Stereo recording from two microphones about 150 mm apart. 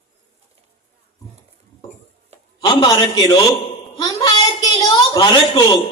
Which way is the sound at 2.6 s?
30° left (ahead or behind).